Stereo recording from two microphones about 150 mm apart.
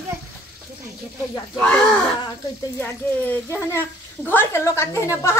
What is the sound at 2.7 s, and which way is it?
A woman's voice, 15° left (ahead or behind).